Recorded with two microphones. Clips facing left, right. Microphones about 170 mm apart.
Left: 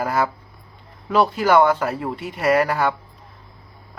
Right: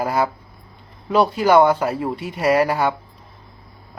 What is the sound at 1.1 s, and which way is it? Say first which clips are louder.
Speech: right 1 dB; centre (ahead or behind).